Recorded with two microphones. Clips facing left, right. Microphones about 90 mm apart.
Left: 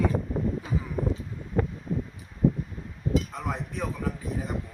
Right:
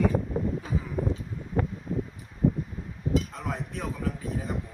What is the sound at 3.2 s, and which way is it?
Speech, centre (ahead or behind).